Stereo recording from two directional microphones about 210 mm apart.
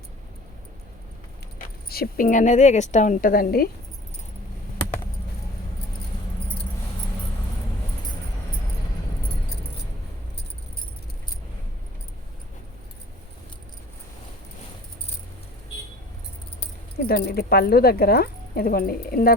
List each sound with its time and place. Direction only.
1.9 s a woman's voice: 45° left (ahead or behind)
17.1 s a woman's voice: 50° left (ahead or behind)